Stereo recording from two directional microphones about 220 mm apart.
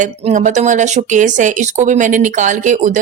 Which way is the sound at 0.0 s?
35° right (ahead or behind).